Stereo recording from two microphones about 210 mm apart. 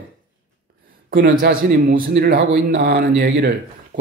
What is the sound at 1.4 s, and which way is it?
Speech, 45° right (ahead or behind).